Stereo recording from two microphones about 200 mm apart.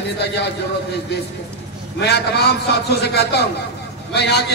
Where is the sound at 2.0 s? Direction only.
55° left (ahead or behind).